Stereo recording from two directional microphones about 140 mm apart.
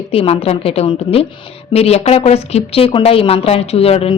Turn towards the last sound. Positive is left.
turn(degrees=45)  # may be behind; listen again after turning